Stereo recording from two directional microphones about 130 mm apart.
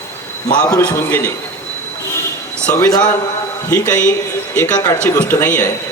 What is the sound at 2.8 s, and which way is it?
Speech, 25° left (ahead or behind).